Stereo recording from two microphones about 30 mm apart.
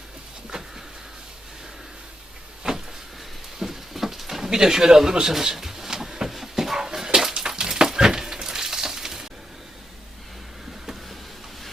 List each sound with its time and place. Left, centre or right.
0.5 s vehicle: right
2.6 s vehicle: right
3.6 s a sound: centre